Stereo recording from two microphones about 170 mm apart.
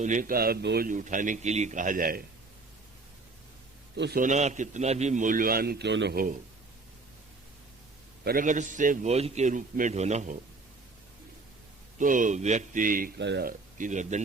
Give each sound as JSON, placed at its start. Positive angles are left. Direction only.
{"t": 0.0, "sound": "a man's voice", "side_deg": -50}
{"t": 0.9, "sound": "a man's voice", "side_deg": -50}
{"t": 3.9, "sound": "a man's voice", "side_deg": -90}
{"t": 4.2, "sound": "a man's voice", "side_deg": -45}
{"t": 8.2, "sound": "a man's voice", "side_deg": -55}
{"t": 11.9, "sound": "a man's voice", "side_deg": -50}
{"t": 13.1, "sound": "speech", "side_deg": -90}
{"t": 13.5, "sound": "speech", "side_deg": -50}